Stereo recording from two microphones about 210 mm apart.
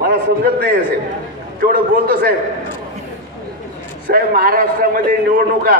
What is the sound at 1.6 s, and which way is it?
Speech, 40° right (ahead or behind).